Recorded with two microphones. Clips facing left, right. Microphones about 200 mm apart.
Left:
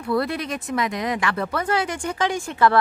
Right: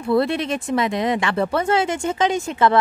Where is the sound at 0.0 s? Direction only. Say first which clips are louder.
Right 4 dB; 25° right (ahead or behind).